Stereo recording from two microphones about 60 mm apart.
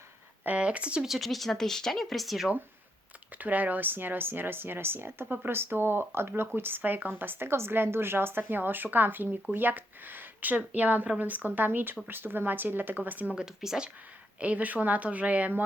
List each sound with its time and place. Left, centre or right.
0.4 s speech: right
1.0 s speech: centre
3.3 s a woman's voice: right
13.3 s speech: centre
14.3 s speech: right